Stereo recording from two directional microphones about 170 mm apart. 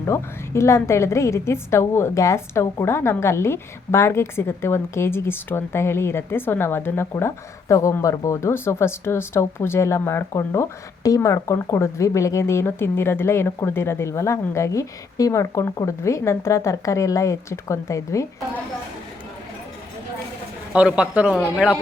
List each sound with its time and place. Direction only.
0.0 s a woman's voice: 15° left (ahead or behind)
20.7 s speech: 5° right (ahead or behind)